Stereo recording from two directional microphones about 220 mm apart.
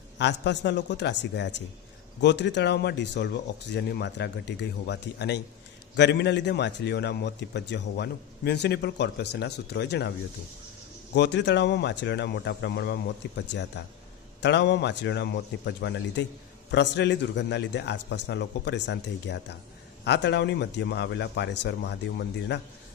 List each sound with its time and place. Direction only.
0.2 s speech: 50° left (ahead or behind)
11.1 s speech: 50° left (ahead or behind)